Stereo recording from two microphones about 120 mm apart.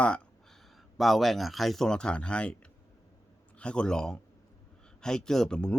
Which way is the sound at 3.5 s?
10° left (ahead or behind).